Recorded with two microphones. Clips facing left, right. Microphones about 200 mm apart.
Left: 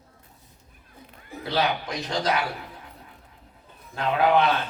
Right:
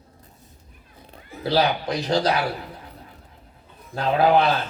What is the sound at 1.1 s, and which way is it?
Speech, 35° right (ahead or behind).